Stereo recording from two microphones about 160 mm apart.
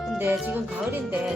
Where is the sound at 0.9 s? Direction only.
10° right (ahead or behind).